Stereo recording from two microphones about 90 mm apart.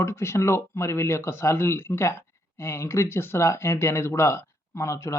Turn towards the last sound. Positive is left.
turn(degrees=35)  # may be behind; listen again after turning